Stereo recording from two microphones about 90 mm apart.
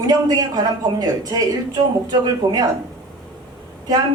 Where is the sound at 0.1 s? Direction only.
45° right (ahead or behind).